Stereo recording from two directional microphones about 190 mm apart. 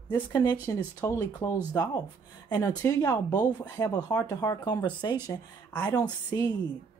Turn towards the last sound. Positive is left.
turn(degrees=20)  # may be behind; listen again after turning